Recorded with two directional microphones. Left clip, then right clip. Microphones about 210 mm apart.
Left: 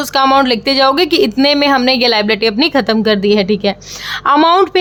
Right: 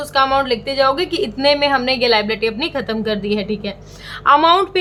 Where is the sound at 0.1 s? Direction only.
45° left (ahead or behind).